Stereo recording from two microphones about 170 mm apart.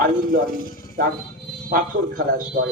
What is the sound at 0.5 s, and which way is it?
Speech, 55° left (ahead or behind).